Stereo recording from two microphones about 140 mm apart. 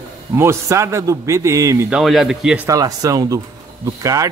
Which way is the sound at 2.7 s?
25° right (ahead or behind).